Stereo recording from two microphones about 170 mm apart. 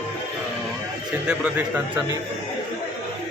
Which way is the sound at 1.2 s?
5° right (ahead or behind).